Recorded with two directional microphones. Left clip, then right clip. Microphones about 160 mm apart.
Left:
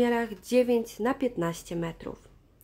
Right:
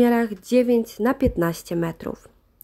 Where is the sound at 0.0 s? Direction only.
35° right (ahead or behind).